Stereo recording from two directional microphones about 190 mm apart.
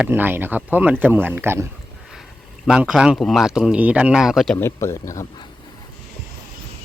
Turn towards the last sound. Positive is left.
turn(degrees=15)  # may be behind; listen again after turning